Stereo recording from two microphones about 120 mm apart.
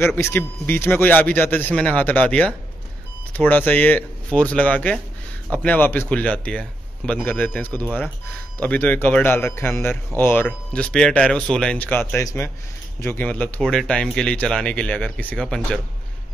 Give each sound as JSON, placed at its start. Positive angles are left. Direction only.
{"t": 0.0, "sound": "speech", "side_deg": 20}